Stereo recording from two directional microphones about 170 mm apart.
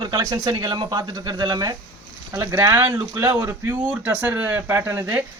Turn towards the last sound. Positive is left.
turn(degrees=-15)  # may be behind; listen again after turning